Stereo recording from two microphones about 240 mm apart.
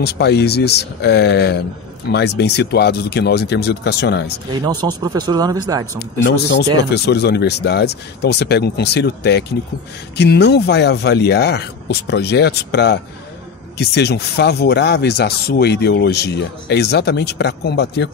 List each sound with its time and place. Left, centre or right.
0.0 s speech: left
4.6 s speech: centre
6.2 s speech: left